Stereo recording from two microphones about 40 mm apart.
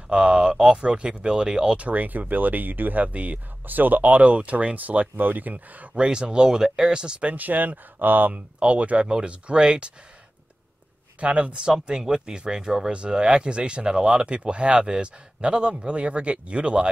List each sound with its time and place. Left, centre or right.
0.1 s speech: right
1.9 s speech: right
3.6 s speech: right
5.9 s speech: right
7.2 s speech: right
8.3 s speech: right
11.1 s speech: right